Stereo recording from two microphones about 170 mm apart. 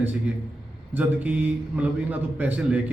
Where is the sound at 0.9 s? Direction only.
10° right (ahead or behind).